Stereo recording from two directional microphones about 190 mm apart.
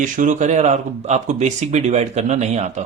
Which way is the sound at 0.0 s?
40° right (ahead or behind).